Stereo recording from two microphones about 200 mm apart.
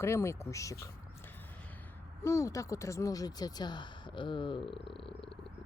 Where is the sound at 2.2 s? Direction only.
15° left (ahead or behind).